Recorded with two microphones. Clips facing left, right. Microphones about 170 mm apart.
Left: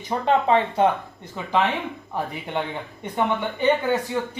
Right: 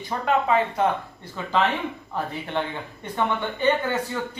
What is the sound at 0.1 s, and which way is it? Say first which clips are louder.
Speech: left 3 dB; 30° left (ahead or behind).